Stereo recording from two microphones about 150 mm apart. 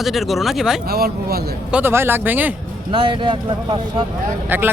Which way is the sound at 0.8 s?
90° right.